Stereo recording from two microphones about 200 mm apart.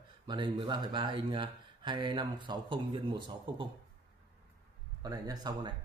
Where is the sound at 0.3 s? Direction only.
25° right (ahead or behind).